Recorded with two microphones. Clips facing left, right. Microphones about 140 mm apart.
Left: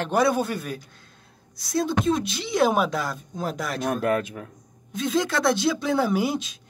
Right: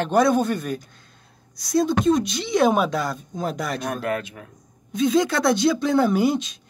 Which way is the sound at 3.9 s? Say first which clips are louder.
Left 3 dB; 40° left (ahead or behind).